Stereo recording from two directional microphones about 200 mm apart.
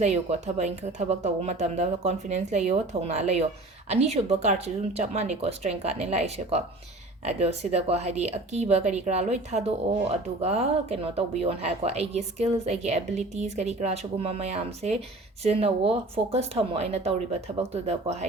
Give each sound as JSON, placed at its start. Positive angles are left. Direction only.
{"t": 0.0, "sound": "speech", "side_deg": -35}